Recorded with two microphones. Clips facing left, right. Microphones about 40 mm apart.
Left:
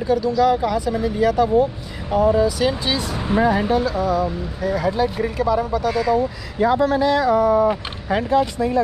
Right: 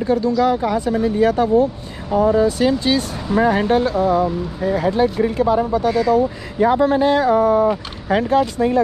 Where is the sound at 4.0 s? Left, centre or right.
Right.